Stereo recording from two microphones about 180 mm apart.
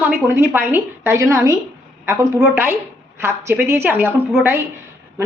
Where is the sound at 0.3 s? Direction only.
10° right (ahead or behind).